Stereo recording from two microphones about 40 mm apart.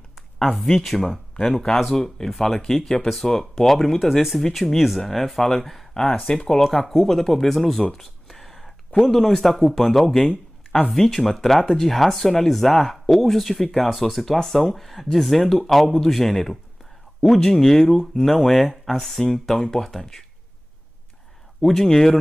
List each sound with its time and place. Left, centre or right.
0.4 s speech: centre
1.8 s speech: centre
6.0 s speech: centre
8.0 s a sound: centre
9.0 s speech: centre
21.5 s speech: centre